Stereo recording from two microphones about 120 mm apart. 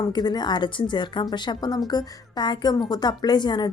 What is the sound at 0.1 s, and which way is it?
A woman's voice, 35° left (ahead or behind).